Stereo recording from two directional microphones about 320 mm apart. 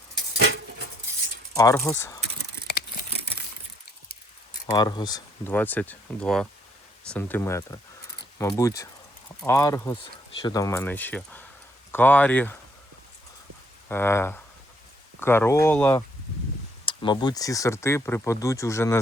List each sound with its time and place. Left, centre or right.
0.3 s a sound: right
1.5 s speech: centre
4.6 s speech: centre
13.8 s speech: centre